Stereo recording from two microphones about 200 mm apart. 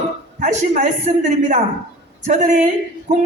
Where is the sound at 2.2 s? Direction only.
35° right (ahead or behind).